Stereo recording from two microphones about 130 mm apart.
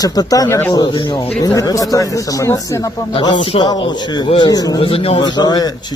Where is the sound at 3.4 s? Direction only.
35° left (ahead or behind).